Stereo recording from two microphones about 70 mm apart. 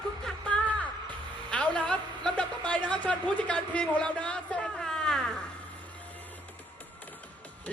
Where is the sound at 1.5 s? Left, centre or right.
Centre.